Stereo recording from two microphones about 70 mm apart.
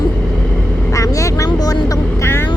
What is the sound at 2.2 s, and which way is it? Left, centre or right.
Vehicle, left.